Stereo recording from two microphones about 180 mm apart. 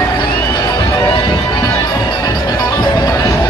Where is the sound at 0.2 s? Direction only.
25° left (ahead or behind).